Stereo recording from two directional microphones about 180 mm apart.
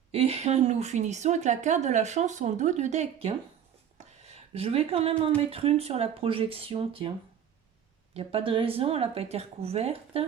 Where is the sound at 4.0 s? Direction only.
35° right (ahead or behind).